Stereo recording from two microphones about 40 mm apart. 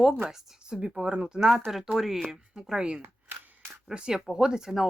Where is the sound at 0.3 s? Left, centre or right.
Centre.